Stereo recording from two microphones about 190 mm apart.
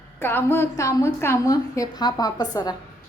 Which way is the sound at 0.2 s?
10° left (ahead or behind).